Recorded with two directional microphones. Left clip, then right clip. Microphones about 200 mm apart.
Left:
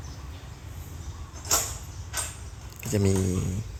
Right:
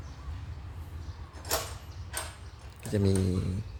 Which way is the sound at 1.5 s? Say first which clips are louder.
Left 5 dB; 50° right (ahead or behind).